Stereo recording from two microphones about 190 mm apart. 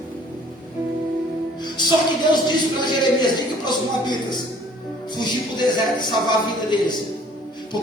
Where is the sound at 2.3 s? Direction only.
25° left (ahead or behind).